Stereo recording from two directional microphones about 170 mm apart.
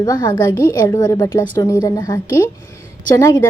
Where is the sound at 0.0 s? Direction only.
25° left (ahead or behind).